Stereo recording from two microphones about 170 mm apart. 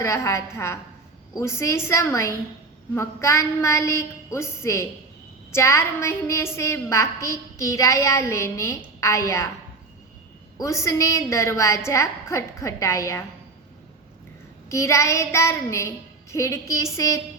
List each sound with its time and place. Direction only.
0.0 s a woman's voice: 15° left (ahead or behind)
10.6 s a woman's voice: 20° left (ahead or behind)
14.7 s a woman's voice: 15° left (ahead or behind)